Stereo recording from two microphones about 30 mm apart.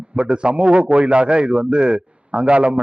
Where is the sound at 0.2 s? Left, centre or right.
Right.